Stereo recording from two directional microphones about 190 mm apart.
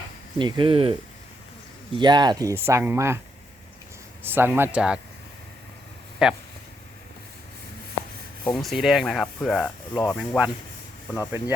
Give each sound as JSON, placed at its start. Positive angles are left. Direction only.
{"t": 0.3, "sound": "speech", "side_deg": -25}
{"t": 2.0, "sound": "speech", "side_deg": -20}
{"t": 4.2, "sound": "speech", "side_deg": -10}
{"t": 6.2, "sound": "rub", "side_deg": 0}
{"t": 8.5, "sound": "rub", "side_deg": 0}
{"t": 11.3, "sound": "speech", "side_deg": -10}